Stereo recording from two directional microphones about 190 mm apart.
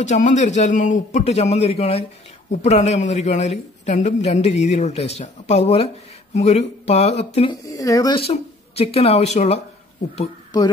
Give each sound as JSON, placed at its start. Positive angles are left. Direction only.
{"t": 0.0, "sound": "speech", "side_deg": 40}
{"t": 7.6, "sound": "speech", "side_deg": 15}
{"t": 8.3, "sound": "speech", "side_deg": 30}
{"t": 10.5, "sound": "a sound", "side_deg": 20}